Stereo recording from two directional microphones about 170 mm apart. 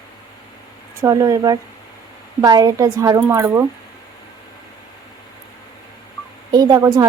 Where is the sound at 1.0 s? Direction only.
20° right (ahead or behind).